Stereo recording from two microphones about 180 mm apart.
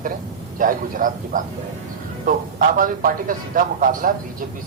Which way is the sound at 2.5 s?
50° right (ahead or behind).